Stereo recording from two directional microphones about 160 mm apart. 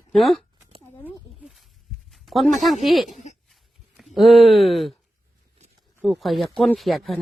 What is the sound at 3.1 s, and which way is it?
Speech, 45° left (ahead or behind).